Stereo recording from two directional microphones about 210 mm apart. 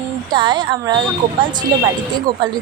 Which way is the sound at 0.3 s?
20° right (ahead or behind).